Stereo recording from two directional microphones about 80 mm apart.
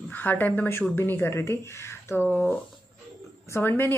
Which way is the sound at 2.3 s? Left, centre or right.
Centre.